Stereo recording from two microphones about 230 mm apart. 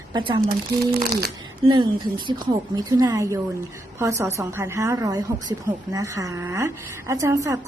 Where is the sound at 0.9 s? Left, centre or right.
Right.